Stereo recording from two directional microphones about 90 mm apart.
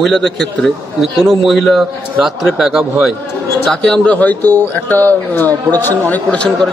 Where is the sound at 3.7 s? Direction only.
10° left (ahead or behind).